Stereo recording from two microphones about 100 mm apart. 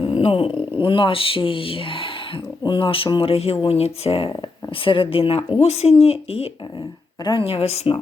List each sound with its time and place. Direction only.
0.1 s speech: 85° left
4.9 s speech: 65° left (ahead or behind)
5.6 s speech: 90° left